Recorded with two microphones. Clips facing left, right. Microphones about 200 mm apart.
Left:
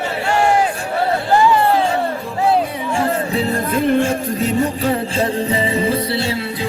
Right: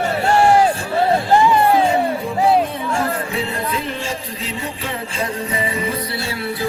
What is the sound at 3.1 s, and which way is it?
Music, 35° left (ahead or behind).